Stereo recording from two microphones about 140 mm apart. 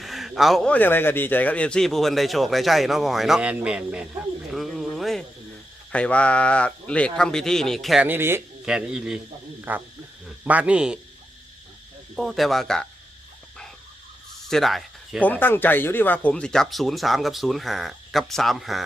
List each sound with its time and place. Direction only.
0.0 s a sound: centre (ahead or behind)
0.7 s speech: 15° left (ahead or behind); by 4.0 s 10° right (ahead or behind)
4.5 s a sound: centre (ahead or behind)
5.9 s a man's voice: 10° left (ahead or behind)
8.0 s a man's voice: 15° right (ahead or behind)
12.1 s speech: centre (ahead or behind)
14.5 s speech: centre (ahead or behind)
15.2 s speech: 15° left (ahead or behind)